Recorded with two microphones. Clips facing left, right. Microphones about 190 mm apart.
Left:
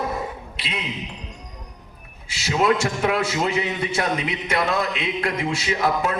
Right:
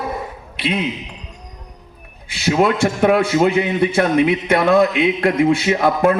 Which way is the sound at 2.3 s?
55° right (ahead or behind).